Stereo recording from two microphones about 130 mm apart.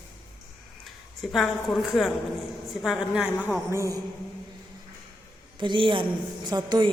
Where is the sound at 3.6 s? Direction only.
25° right (ahead or behind).